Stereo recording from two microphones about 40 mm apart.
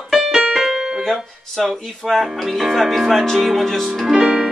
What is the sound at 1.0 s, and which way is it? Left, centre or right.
Speech, centre.